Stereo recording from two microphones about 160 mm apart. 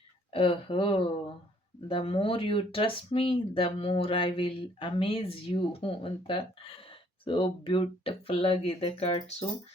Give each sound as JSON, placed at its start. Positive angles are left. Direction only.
{"t": 0.3, "sound": "speech", "side_deg": 35}